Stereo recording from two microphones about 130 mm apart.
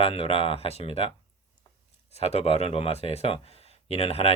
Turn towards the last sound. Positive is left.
turn(degrees=50)  # may be behind; listen again after turning